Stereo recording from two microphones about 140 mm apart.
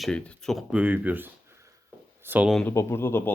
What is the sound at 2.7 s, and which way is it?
Speech, 20° left (ahead or behind).